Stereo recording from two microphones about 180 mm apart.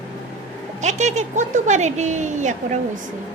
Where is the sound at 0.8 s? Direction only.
40° right (ahead or behind).